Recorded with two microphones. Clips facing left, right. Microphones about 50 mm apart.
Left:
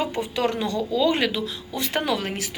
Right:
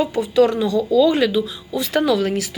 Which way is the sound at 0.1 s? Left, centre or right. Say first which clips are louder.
Right 9 dB; left.